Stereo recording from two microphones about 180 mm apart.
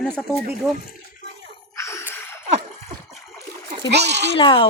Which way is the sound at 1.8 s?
15° left (ahead or behind).